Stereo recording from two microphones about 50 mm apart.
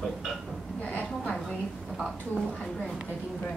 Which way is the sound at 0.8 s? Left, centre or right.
Left.